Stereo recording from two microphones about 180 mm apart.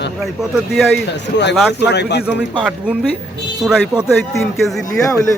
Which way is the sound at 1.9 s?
70° left (ahead or behind).